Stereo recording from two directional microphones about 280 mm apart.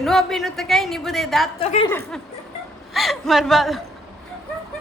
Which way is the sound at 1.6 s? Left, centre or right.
Left.